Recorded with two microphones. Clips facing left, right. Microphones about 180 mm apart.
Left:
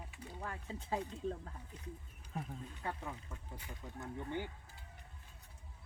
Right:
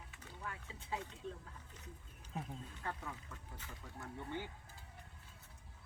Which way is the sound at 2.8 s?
15° left (ahead or behind).